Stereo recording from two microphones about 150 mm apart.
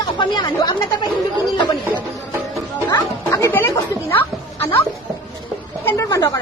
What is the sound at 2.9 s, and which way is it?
Chatter, 25° left (ahead or behind).